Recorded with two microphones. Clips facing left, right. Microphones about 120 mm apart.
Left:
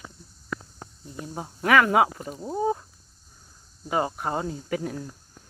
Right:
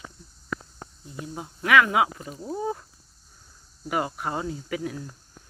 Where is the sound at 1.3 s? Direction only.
35° left (ahead or behind).